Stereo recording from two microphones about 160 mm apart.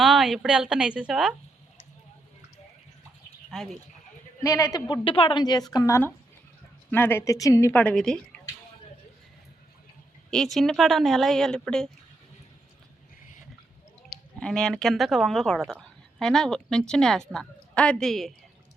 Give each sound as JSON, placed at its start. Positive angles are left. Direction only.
{"t": 0.0, "sound": "a woman's voice", "side_deg": 0}
{"t": 3.5, "sound": "a woman's voice", "side_deg": 0}
{"t": 4.4, "sound": "a woman's voice", "side_deg": 20}
{"t": 5.0, "sound": "a woman's voice", "side_deg": 35}
{"t": 7.8, "sound": "a woman's voice", "side_deg": 5}
{"t": 10.3, "sound": "a woman's voice", "side_deg": 0}
{"t": 14.3, "sound": "a woman's voice", "side_deg": 5}